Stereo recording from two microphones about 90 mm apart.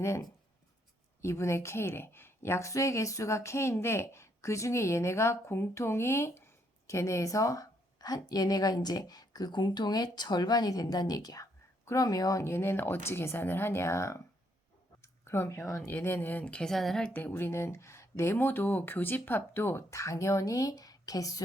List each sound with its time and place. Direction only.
0.0 s a woman's voice: 35° left (ahead or behind)
15.9 s speech: 20° left (ahead or behind); by 17.1 s 5° left (ahead or behind)
17.2 s a woman's voice: 20° left (ahead or behind); by 21.4 s 45° left (ahead or behind)